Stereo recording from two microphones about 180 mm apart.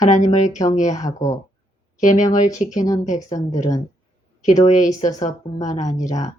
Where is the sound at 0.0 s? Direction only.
45° left (ahead or behind).